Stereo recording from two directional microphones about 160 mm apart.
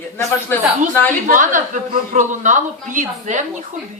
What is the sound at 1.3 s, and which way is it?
Speech, 55° right (ahead or behind).